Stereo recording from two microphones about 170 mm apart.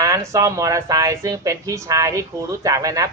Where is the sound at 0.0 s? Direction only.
20° right (ahead or behind).